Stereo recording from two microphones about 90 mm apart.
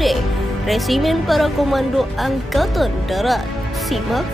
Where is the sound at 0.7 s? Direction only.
Centre (ahead or behind).